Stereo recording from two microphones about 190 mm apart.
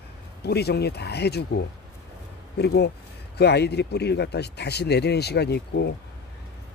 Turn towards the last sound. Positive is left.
turn(degrees=60)  # may be behind; listen again after turning